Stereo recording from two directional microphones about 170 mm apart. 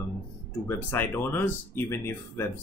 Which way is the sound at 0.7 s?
15° left (ahead or behind).